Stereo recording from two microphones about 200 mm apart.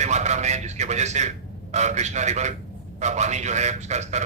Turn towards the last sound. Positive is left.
turn(degrees=-35)  # may be behind; listen again after turning